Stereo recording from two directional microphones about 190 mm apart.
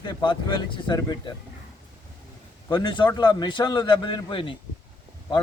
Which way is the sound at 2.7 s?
25° left (ahead or behind).